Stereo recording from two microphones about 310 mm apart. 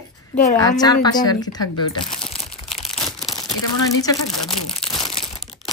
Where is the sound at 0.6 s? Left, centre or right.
Centre.